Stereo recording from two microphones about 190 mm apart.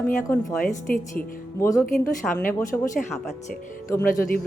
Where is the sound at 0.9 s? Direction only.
50° left (ahead or behind).